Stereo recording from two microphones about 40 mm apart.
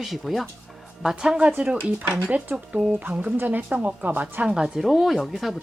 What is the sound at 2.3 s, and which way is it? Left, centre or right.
Speech, right.